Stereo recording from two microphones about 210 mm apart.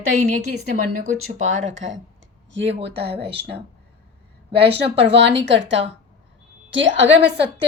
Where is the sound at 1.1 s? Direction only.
75° right (ahead or behind); by 3.1 s 55° right (ahead or behind).